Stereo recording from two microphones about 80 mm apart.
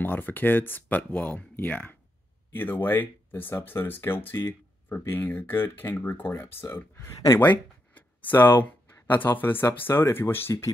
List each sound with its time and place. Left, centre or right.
0.0 s speech: left